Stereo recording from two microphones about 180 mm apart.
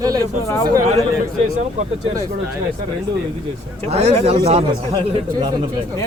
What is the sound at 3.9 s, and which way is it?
Speech, 35° right (ahead or behind).